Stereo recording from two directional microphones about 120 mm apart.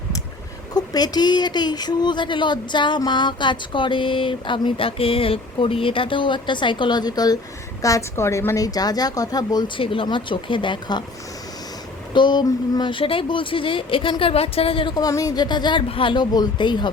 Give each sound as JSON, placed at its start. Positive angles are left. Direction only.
{"t": 0.7, "sound": "speech", "side_deg": 35}
{"t": 12.1, "sound": "speech", "side_deg": 40}
{"t": 14.9, "sound": "speech", "side_deg": 30}